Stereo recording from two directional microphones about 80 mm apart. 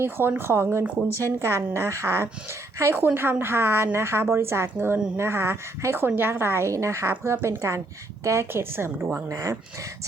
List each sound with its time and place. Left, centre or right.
0.0 s a woman's voice: right
1.0 s a woman's voice: left
1.4 s a woman's voice: right
9.3 s speech: right